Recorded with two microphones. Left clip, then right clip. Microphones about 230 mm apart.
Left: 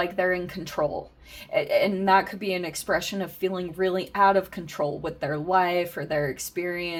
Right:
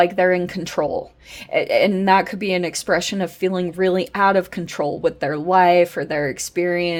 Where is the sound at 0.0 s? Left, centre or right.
Right.